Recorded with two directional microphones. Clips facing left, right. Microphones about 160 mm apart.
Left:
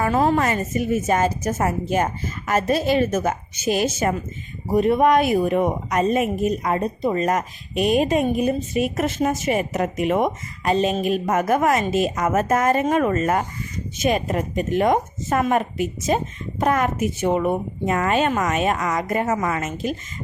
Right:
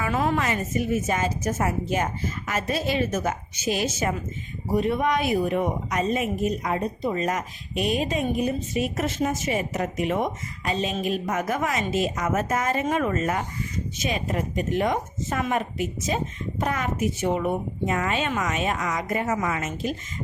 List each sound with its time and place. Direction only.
0.0 s a woman's voice: 35° left (ahead or behind)